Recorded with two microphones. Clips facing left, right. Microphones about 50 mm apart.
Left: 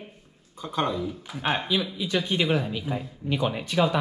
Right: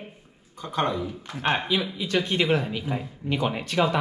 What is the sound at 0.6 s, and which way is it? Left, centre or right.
Speech, right.